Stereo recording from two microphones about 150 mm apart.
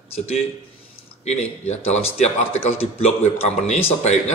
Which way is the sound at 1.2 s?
45° left (ahead or behind).